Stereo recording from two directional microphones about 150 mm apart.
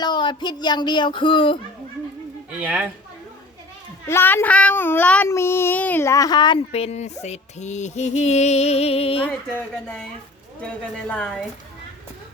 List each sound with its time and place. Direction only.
0.0 s speech: 30° left (ahead or behind)
2.6 s a woman's voice: 10° right (ahead or behind)
4.0 s a child's voice: 15° left (ahead or behind)
6.7 s music: 45° left (ahead or behind)
9.5 s a child's voice: 10° left (ahead or behind)
11.1 s a woman's voice: 5° left (ahead or behind)